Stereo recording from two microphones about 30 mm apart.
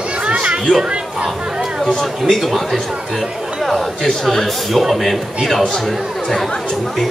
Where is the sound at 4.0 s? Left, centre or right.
Centre.